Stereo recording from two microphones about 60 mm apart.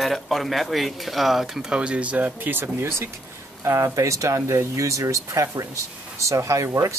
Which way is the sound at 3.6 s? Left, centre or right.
Right.